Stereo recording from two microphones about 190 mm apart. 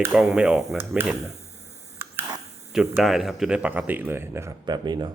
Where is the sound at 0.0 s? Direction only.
5° right (ahead or behind).